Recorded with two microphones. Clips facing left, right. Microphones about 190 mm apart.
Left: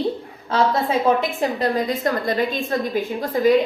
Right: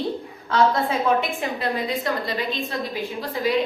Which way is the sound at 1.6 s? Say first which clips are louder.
Left 4 dB; 45° left (ahead or behind).